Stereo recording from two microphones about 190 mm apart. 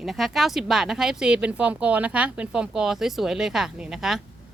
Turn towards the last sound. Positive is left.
turn(degrees=0)  # may be behind; listen again after turning